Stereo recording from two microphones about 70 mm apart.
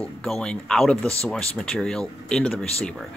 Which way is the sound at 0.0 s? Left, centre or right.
Centre.